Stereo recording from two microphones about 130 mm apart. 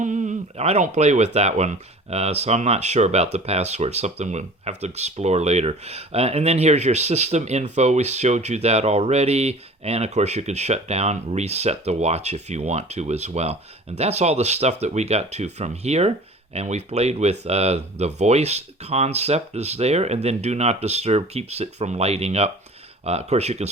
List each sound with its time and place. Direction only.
0.0 s speech: 70° right (ahead or behind); by 23.6 s 55° right (ahead or behind)